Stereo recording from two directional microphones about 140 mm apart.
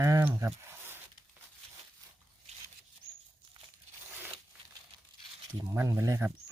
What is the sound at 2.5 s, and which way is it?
Rodents, 50° right (ahead or behind).